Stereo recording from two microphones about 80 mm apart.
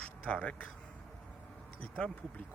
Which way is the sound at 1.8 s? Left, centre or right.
Centre.